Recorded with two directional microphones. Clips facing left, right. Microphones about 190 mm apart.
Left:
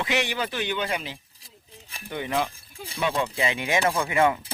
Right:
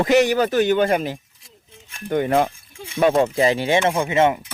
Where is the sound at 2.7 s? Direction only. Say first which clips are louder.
Right 5 dB; 35° left (ahead or behind).